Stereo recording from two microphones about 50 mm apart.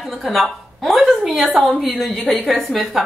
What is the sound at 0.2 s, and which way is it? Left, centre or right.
A woman's voice, centre.